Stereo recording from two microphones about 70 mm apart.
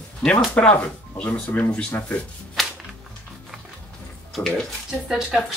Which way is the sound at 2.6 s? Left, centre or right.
Centre.